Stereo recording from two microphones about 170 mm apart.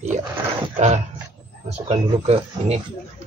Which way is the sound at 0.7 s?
45° right (ahead or behind).